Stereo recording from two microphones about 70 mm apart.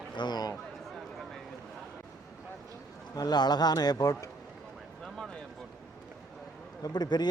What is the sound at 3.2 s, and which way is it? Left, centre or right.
Speech, left.